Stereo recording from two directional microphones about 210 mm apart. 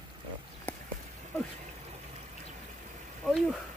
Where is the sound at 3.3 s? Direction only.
Centre (ahead or behind).